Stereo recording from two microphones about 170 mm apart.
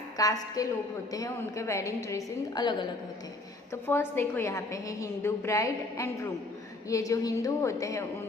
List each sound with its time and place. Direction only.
0.2 s a woman's voice: 20° left (ahead or behind)
3.8 s a woman's voice: 15° left (ahead or behind)